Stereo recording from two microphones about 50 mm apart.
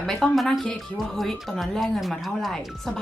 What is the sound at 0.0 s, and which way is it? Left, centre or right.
Speech, centre.